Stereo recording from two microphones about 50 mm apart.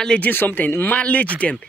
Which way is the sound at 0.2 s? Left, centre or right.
Left.